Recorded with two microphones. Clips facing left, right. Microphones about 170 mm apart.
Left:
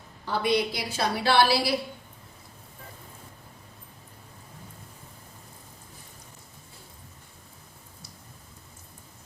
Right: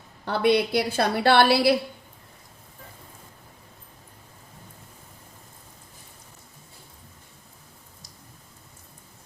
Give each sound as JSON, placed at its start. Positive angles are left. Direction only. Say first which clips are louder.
{"t": 0.3, "sound": "a woman's voice", "louder": "right 4 dB", "side_deg": -60}